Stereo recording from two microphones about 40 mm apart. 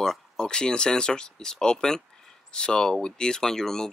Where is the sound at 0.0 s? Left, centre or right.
Centre.